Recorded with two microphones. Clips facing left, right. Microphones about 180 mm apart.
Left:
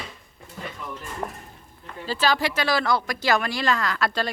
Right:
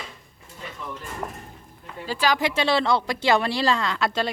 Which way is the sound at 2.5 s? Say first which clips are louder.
Right 2 dB; 25° right (ahead or behind).